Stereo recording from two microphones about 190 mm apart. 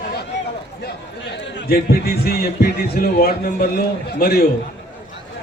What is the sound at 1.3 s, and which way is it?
A man's voice, 55° left (ahead or behind).